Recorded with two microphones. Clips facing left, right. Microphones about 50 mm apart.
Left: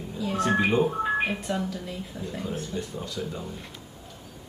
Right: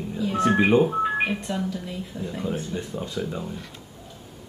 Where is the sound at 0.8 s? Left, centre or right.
Centre.